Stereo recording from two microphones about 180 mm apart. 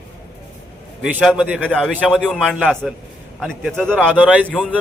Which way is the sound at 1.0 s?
5° right (ahead or behind).